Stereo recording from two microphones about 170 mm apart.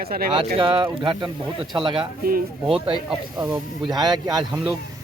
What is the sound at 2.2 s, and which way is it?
Speech, 60° right (ahead or behind).